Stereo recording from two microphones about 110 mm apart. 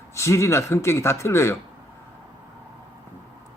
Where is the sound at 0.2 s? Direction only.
25° left (ahead or behind).